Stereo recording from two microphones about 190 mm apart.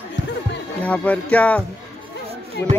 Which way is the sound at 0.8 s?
5° left (ahead or behind).